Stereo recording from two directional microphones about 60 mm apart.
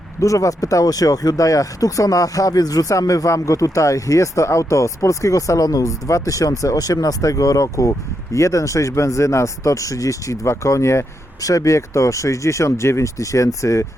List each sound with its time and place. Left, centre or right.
0.2 s speech: left
11.3 s speech: left